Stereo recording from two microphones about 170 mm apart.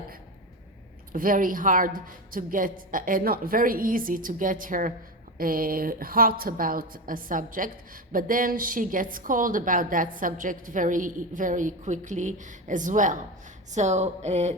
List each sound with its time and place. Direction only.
1.1 s a woman's voice: 55° right (ahead or behind)